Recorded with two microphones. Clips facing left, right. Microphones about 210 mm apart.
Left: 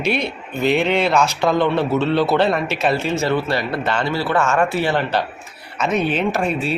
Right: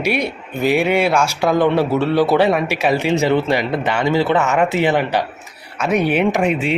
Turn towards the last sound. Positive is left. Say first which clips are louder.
# right 4 dB
turn(degrees=-15)  # may be behind; listen again after turning